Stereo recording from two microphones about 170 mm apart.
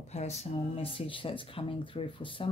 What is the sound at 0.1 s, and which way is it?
Speech, 40° left (ahead or behind).